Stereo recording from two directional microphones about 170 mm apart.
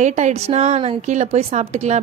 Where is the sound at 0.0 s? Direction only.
40° right (ahead or behind).